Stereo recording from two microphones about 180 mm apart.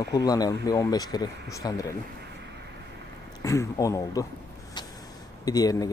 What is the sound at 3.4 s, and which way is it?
Speech, 15° left (ahead or behind).